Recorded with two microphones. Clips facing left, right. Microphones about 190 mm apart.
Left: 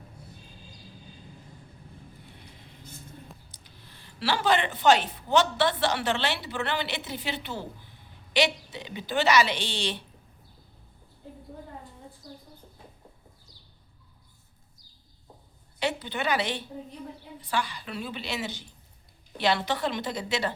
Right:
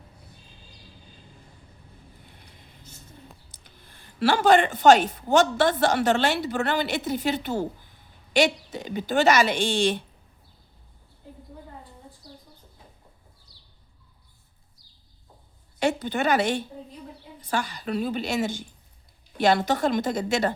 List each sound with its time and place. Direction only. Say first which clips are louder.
3.5 s speech: even; 50° right (ahead or behind)
12.2 s chicken: left 3 dB; 45° left (ahead or behind)
13.5 s a sound: left 3 dB; 45° left (ahead or behind)
15.8 s speech: right 5 dB; 45° right (ahead or behind)